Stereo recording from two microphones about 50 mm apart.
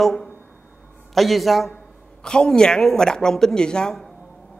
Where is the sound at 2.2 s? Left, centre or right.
Centre.